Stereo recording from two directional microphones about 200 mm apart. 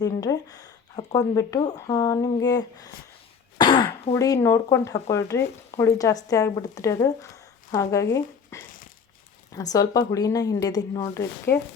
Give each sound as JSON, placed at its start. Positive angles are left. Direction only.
{"t": 0.0, "sound": "speech", "side_deg": 15}
{"t": 3.6, "sound": "throat clearing", "side_deg": 25}
{"t": 4.1, "sound": "speech", "side_deg": 15}